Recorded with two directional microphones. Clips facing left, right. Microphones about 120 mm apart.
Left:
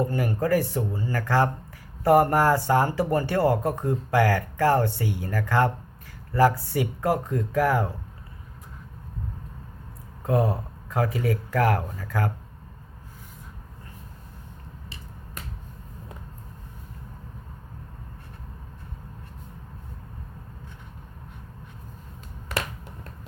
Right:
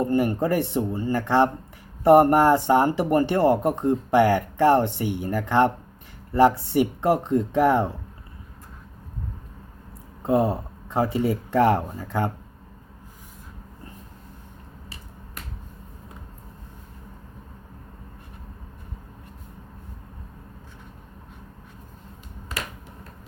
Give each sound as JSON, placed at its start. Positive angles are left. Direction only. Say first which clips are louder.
{"t": 0.1, "sound": "speech", "louder": "right 2 dB", "side_deg": -20}
{"t": 10.2, "sound": "speech", "louder": "right 3 dB", "side_deg": -25}